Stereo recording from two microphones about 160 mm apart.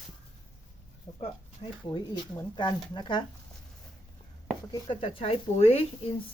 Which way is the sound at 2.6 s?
25° left (ahead or behind).